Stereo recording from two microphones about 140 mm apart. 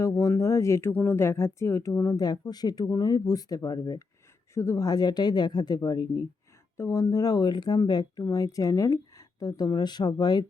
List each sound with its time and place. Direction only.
0.0 s speech: 25° left (ahead or behind)